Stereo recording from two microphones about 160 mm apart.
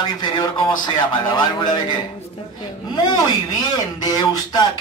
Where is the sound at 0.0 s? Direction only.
25° left (ahead or behind).